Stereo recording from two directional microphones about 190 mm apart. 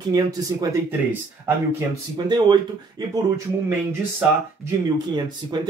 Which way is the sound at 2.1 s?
20° right (ahead or behind).